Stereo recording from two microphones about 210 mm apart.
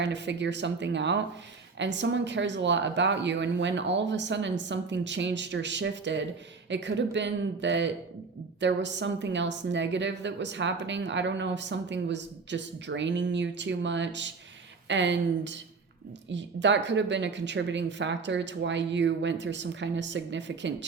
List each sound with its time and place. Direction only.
0.0 s a woman's voice: 55° right (ahead or behind)